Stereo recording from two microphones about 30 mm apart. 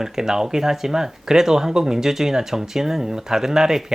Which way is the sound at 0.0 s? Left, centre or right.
Centre.